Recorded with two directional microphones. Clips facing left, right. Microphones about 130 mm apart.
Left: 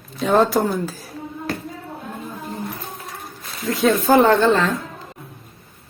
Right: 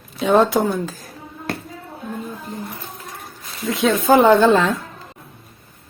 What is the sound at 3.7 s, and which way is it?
A woman's voice, centre (ahead or behind).